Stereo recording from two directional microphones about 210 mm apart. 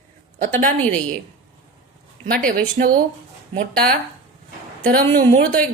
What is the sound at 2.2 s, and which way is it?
Speech, 40° right (ahead or behind).